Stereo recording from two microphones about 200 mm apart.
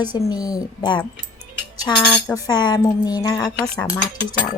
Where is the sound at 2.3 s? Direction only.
20° left (ahead or behind).